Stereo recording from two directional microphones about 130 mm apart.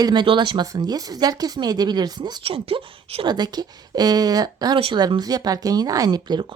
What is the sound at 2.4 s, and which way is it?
Speech, 45° right (ahead or behind).